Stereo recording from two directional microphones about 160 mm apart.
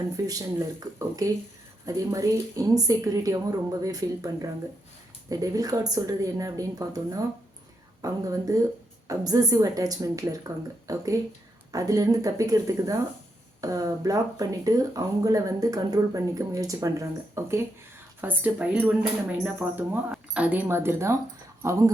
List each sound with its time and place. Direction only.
0.2 s speech: 20° right (ahead or behind)